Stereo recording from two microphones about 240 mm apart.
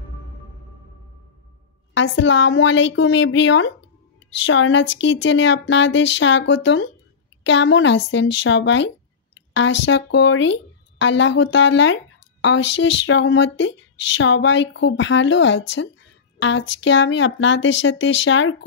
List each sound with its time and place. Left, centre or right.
2.0 s speech: left